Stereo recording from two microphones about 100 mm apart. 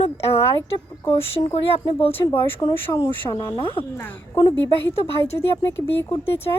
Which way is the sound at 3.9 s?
20° left (ahead or behind).